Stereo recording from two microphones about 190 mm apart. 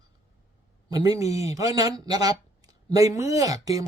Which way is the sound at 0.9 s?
20° right (ahead or behind).